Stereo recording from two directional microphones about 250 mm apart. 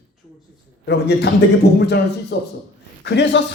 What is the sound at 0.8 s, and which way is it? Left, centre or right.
A man's voice, left.